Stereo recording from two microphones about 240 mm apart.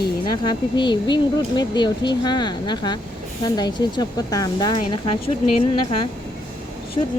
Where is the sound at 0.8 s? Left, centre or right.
Centre.